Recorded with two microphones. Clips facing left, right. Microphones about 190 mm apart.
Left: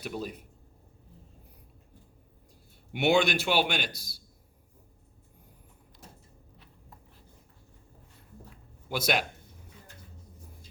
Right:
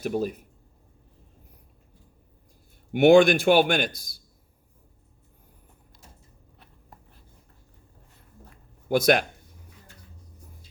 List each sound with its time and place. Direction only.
0.0 s speech: 45° right (ahead or behind)
2.9 s speech: 50° right (ahead or behind)
8.4 s a sound: 50° right (ahead or behind)